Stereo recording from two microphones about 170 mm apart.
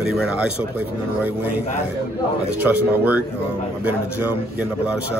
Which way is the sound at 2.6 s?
10° right (ahead or behind).